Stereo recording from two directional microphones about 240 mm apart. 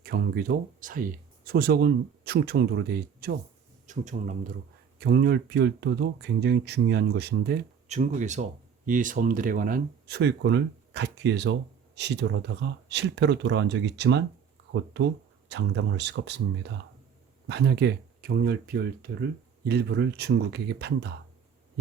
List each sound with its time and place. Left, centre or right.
0.0 s speech: right
7.9 s speech: right